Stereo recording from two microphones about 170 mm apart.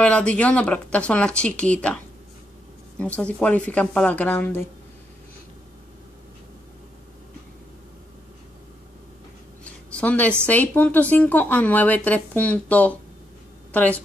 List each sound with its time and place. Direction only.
0.0 s a woman's voice: 5° left (ahead or behind)
3.0 s a woman's voice: 5° left (ahead or behind)
9.7 s a sound: 10° left (ahead or behind)
10.4 s a woman's voice: 10° left (ahead or behind)